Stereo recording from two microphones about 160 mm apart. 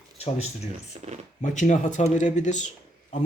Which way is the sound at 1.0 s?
40° right (ahead or behind).